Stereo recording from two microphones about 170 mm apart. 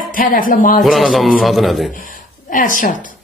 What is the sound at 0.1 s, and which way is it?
Speech, 55° left (ahead or behind).